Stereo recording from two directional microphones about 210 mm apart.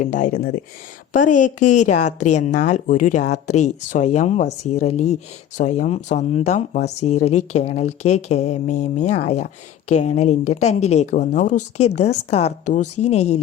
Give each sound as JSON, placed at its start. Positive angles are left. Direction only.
{"t": 0.0, "sound": "speech", "side_deg": 35}